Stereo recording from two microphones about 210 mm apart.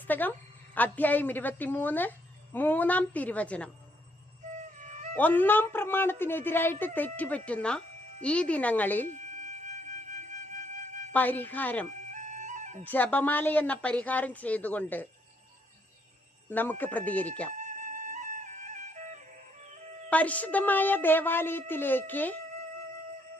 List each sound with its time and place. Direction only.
0.1 s a woman's voice: 10° left (ahead or behind)
4.5 s music: 35° right (ahead or behind)
5.1 s a woman's voice: 10° left (ahead or behind)
9.0 s music: 35° right (ahead or behind)
11.1 s a woman's voice: 10° left (ahead or behind)
12.1 s music: 35° right (ahead or behind)
12.8 s a woman's voice: 10° left (ahead or behind)
16.5 s a woman's voice: 10° left (ahead or behind)
17.6 s music: 35° right (ahead or behind)
20.1 s a woman's voice: 5° left (ahead or behind)